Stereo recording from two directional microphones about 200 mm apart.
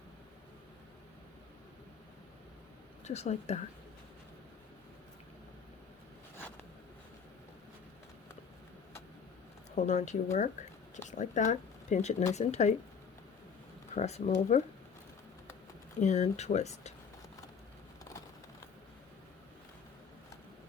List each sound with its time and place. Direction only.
3.0 s speech: 35° left (ahead or behind)
9.7 s speech: 35° left (ahead or behind)
13.9 s speech: 35° left (ahead or behind)
16.0 s speech: 35° left (ahead or behind)